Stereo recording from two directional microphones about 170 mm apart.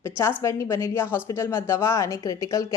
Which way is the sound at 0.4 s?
15° left (ahead or behind).